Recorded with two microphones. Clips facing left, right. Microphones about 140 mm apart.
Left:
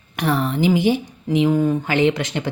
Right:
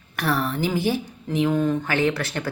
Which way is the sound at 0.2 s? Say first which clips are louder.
Left 4 dB; 20° left (ahead or behind).